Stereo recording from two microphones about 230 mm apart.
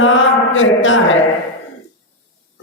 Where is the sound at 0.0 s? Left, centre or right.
Left.